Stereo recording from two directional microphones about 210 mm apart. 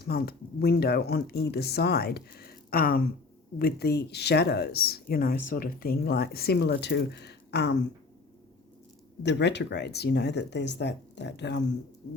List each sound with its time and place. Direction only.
0.0 s speech: 45° left (ahead or behind)
9.2 s speech: 55° left (ahead or behind)